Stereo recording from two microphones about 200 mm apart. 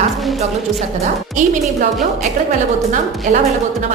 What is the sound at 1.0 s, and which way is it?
Speech, 40° right (ahead or behind).